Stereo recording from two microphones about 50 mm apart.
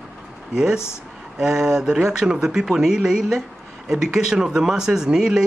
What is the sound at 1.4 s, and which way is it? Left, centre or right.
Speech, centre.